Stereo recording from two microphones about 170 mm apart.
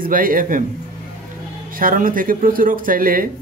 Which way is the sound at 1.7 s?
55° right (ahead or behind).